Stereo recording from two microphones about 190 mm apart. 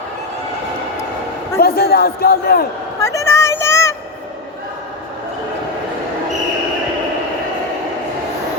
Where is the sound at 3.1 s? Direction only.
15° left (ahead or behind).